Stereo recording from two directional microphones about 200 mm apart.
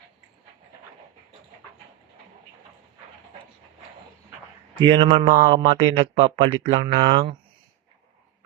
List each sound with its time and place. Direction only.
4.8 s speech: 25° right (ahead or behind)
5.2 s speech: 35° right (ahead or behind)